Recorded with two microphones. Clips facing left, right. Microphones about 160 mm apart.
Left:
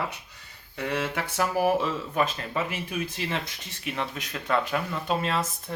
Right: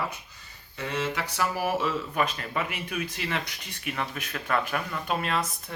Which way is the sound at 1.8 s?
30° left (ahead or behind).